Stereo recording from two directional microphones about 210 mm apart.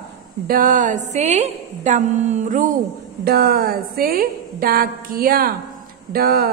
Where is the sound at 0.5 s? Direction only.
40° right (ahead or behind).